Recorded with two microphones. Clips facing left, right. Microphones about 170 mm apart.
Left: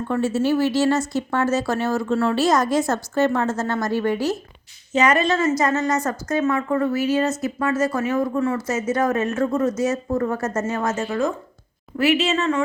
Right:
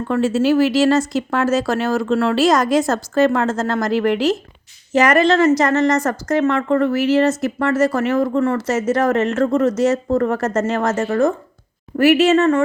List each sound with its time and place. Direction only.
0.1 s a woman's voice: 90° right; by 12.6 s 60° right (ahead or behind)